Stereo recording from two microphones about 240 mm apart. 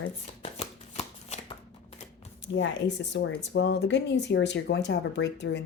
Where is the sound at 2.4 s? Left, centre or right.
Left.